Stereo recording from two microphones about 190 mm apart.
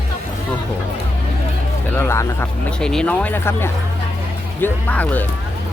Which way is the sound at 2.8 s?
5° left (ahead or behind).